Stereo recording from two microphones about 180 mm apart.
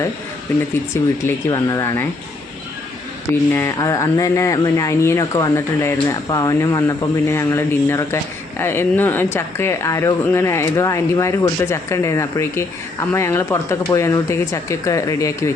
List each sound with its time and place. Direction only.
1.2 s speech: 20° left (ahead or behind)
3.5 s speech: 15° left (ahead or behind)